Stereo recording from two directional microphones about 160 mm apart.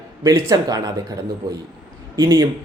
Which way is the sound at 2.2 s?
20° right (ahead or behind).